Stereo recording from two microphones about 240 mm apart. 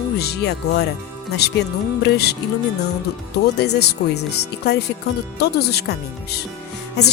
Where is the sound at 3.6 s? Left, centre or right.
Left.